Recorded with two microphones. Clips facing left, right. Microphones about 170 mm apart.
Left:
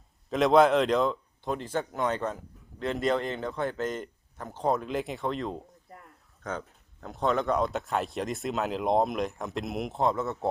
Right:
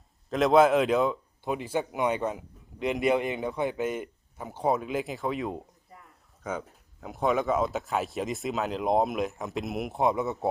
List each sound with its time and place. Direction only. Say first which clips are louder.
0.3 s a man's voice: even; centre (ahead or behind)
9.9 s a man's voice: right 2 dB; 15° right (ahead or behind)
10.2 s speech: right 1 dB; centre (ahead or behind)